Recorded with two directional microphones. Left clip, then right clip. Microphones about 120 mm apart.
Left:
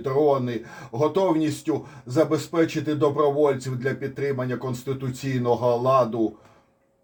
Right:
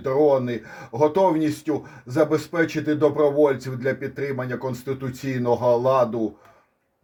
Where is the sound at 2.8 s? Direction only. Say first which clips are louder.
Right 2 dB; 45° right (ahead or behind).